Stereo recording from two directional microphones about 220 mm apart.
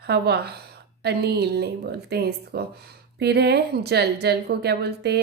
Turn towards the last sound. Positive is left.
turn(degrees=-50)  # may be behind; listen again after turning